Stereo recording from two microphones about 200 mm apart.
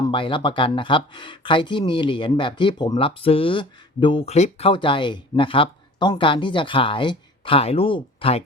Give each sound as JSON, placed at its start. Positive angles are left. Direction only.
{"t": 0.1, "sound": "speech", "side_deg": 25}